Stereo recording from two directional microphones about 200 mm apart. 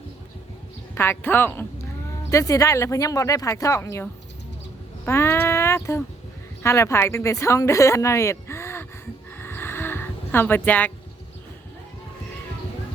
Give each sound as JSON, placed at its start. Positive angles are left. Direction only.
{"t": 0.9, "sound": "a woman's voice", "side_deg": 10}
{"t": 9.4, "sound": "music", "side_deg": 10}